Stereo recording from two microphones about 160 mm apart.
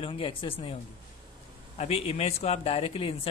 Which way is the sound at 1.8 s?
40° left (ahead or behind).